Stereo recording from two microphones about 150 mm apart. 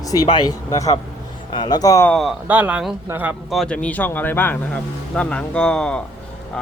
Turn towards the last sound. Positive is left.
turn(degrees=5)  # may be behind; listen again after turning